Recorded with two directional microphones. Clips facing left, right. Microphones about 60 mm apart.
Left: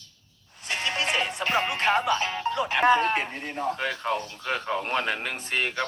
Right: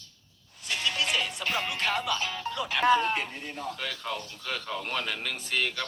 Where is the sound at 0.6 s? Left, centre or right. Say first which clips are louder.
Left 2 dB; left.